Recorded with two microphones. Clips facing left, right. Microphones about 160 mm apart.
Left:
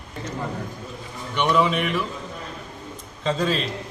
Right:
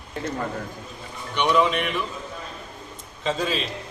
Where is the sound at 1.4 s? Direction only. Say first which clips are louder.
Even; centre (ahead or behind).